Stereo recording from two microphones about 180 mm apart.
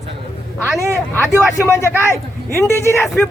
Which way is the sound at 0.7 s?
15° right (ahead or behind).